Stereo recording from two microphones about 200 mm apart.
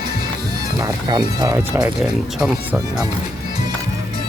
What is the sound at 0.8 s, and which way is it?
Music, 20° right (ahead or behind).